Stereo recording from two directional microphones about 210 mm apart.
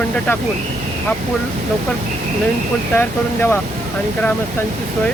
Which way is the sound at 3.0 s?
10° left (ahead or behind).